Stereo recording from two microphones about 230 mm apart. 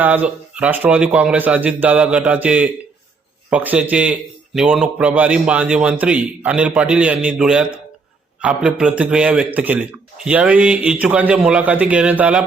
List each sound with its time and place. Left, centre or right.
0.0 s a man's voice: centre